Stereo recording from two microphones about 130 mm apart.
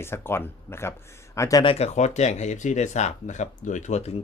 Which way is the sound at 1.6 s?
50° left (ahead or behind).